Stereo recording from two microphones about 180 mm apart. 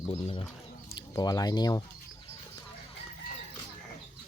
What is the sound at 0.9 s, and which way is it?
Speech, 20° left (ahead or behind).